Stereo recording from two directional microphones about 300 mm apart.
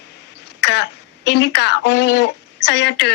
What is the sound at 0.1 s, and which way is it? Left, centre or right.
Speech, left.